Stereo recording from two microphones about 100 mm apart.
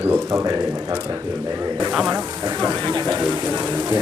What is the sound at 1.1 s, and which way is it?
Speech, 25° right (ahead or behind).